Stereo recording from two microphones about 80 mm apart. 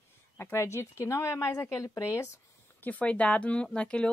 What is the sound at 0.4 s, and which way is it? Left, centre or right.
Speech, left.